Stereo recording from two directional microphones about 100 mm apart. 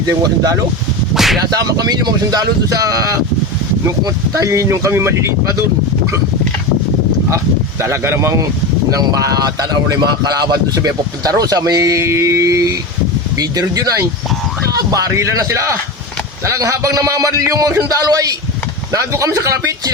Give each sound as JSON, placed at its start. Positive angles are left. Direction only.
{"t": 0.0, "sound": "speech", "side_deg": -35}
{"t": 1.1, "sound": "a sound", "side_deg": 0}
{"t": 1.5, "sound": "speech", "side_deg": -40}
{"t": 7.3, "sound": "a man's voice", "side_deg": -30}